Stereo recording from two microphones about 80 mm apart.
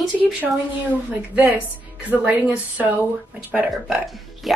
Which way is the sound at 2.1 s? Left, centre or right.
Centre.